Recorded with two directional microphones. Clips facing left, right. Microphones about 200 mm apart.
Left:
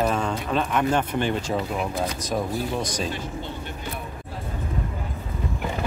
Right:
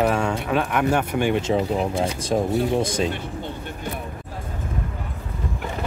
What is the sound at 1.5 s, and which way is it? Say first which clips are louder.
Speech: right 5 dB; 25° right (ahead or behind).